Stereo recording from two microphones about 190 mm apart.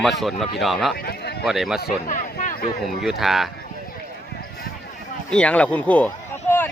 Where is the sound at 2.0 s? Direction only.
45° left (ahead or behind).